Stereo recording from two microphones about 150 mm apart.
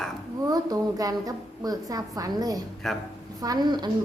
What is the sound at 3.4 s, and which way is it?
Speech, 25° right (ahead or behind).